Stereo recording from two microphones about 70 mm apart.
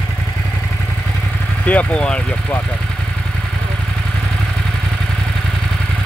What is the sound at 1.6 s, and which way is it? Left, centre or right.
Speech, centre.